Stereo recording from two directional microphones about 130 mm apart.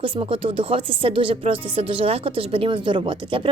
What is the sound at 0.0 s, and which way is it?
A woman's voice, 45° right (ahead or behind).